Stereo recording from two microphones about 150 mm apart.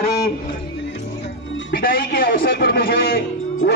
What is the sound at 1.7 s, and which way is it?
A man's voice, 75° left (ahead or behind).